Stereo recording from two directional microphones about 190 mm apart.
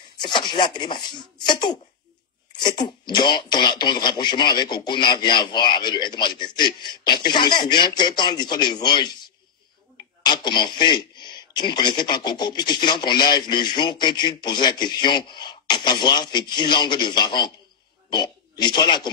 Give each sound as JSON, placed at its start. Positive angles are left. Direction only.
{"t": 0.2, "sound": "a man's voice", "side_deg": 25}